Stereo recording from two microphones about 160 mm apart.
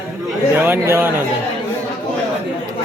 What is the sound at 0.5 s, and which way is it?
Speech, 15° right (ahead or behind).